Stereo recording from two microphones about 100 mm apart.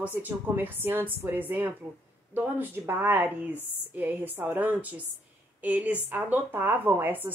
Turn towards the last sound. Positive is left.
turn(degrees=-20)  # may be behind; listen again after turning